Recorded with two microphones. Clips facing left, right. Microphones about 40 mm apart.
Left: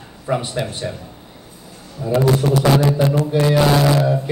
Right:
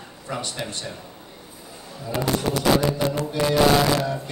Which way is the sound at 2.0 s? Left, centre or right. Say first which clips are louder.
Left 11 dB; centre.